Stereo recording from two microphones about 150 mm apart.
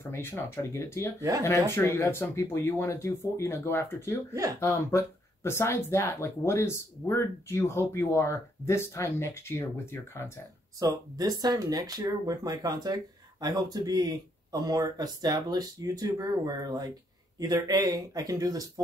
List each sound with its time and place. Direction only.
0.0 s speech: 15° left (ahead or behind)
4.3 s speech: 20° right (ahead or behind)
4.6 s speech: 20° left (ahead or behind)
10.8 s speech: 25° right (ahead or behind)